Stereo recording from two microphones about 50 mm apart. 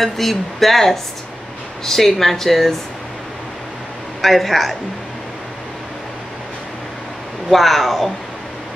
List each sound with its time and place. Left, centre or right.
0.0 s speech: centre
4.2 s speech: centre
7.4 s speech: centre